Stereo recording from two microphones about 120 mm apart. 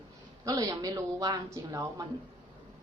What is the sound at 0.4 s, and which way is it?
Speech, 30° right (ahead or behind).